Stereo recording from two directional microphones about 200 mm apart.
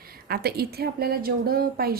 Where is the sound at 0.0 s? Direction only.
50° right (ahead or behind).